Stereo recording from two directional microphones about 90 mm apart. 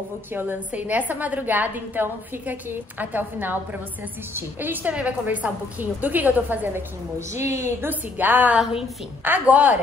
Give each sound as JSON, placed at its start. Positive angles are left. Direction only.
{"t": 0.3, "sound": "a woman's voice", "side_deg": -20}
{"t": 7.2, "sound": "a woman's voice", "side_deg": -30}